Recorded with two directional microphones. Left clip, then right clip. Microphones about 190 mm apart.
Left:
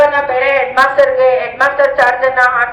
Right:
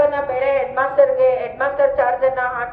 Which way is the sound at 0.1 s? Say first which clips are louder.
Left 6 dB; 25° right (ahead or behind).